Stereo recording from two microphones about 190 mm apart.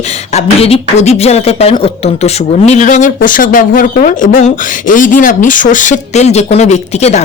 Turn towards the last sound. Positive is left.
turn(degrees=35)  # may be behind; listen again after turning